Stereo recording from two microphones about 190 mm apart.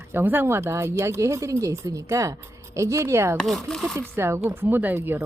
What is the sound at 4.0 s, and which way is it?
Speech, 15° right (ahead or behind).